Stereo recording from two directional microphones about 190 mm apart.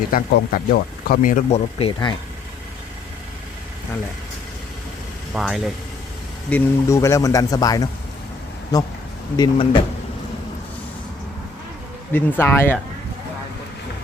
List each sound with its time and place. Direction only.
0.1 s speech: 50° left (ahead or behind); by 2.1 s 25° left (ahead or behind)
5.3 s speech: 5° right (ahead or behind)
6.5 s speech: 15° left (ahead or behind)
9.3 s speech: 20° left (ahead or behind)
12.1 s speech: 10° left (ahead or behind)